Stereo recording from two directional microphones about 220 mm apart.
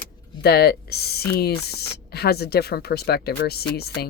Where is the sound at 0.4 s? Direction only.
45° left (ahead or behind).